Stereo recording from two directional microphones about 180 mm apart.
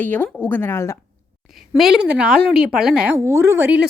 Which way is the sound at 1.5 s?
Centre (ahead or behind).